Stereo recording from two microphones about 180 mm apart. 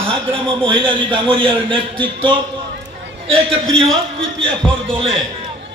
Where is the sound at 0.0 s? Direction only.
30° right (ahead or behind).